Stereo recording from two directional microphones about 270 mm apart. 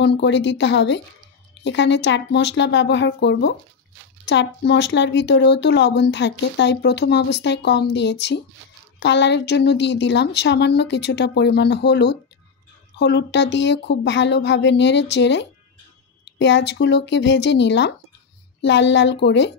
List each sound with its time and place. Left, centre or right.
0.0 s speech: left